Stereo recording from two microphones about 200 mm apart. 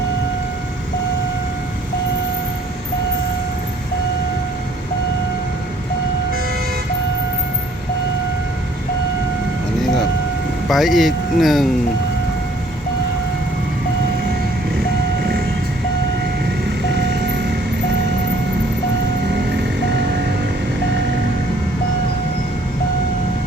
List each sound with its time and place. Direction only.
10.7 s speech: centre (ahead or behind)
17.0 s vehicle: 60° right (ahead or behind)